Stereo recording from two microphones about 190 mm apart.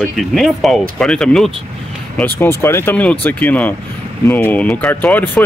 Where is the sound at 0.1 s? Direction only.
Centre (ahead or behind).